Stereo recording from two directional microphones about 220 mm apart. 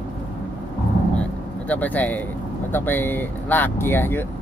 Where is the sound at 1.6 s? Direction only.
5° left (ahead or behind).